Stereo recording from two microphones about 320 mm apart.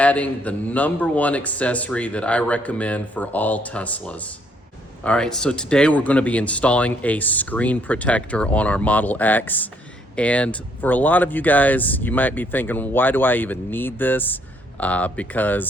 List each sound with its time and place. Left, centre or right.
0.0 s speech: centre